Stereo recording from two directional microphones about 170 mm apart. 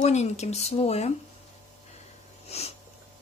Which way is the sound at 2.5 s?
40° left (ahead or behind).